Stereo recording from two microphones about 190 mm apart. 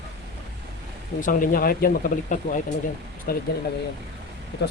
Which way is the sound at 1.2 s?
45° left (ahead or behind).